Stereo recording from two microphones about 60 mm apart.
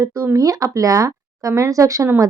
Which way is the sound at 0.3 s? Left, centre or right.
Right.